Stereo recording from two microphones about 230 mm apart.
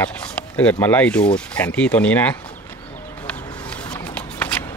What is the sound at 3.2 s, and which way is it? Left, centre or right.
Walk, centre.